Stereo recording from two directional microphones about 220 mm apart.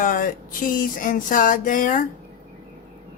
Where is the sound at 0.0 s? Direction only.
40° left (ahead or behind).